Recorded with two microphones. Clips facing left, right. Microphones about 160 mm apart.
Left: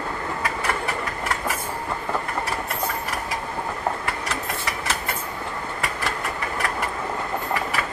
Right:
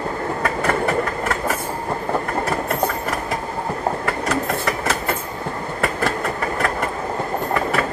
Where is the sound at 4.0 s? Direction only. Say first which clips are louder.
Right 7 dB; 50° right (ahead or behind).